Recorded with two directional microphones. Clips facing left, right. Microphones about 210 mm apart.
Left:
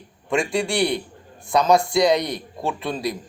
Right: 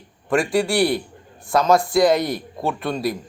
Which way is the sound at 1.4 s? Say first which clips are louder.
Even; centre (ahead or behind).